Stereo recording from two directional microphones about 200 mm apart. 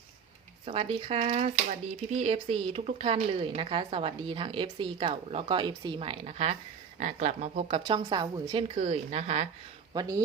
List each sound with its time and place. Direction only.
0.6 s speech: 25° right (ahead or behind)
9.9 s speech: 20° right (ahead or behind)